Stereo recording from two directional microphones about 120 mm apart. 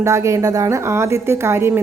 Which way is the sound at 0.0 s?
25° right (ahead or behind).